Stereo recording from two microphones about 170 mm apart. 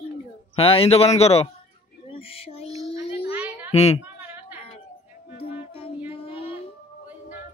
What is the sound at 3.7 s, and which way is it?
Speech, 40° left (ahead or behind).